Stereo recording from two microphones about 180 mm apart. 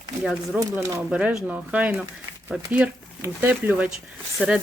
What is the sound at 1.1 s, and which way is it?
Speech, 5° right (ahead or behind).